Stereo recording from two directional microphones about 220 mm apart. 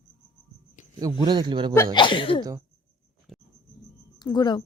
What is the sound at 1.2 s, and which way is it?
Speech, 20° right (ahead or behind).